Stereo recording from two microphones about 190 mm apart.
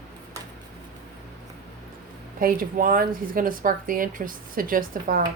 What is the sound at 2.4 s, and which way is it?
Speech, 50° right (ahead or behind).